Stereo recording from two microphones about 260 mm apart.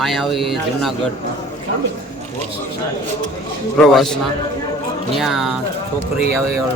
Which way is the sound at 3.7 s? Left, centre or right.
Centre.